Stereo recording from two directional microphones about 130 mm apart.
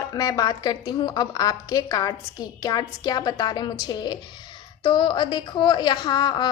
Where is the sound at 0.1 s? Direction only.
30° left (ahead or behind).